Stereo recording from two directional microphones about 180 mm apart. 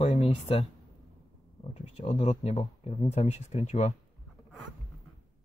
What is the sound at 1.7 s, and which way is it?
Speech, 40° left (ahead or behind).